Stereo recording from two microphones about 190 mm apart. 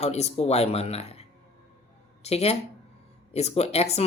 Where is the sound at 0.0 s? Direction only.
35° left (ahead or behind).